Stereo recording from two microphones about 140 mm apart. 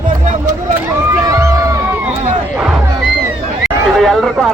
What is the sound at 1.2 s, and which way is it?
Music, 25° right (ahead or behind).